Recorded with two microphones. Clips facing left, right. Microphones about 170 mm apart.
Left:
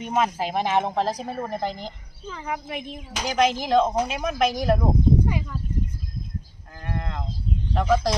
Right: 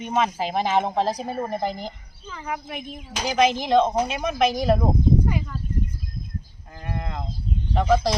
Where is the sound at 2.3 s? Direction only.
15° left (ahead or behind).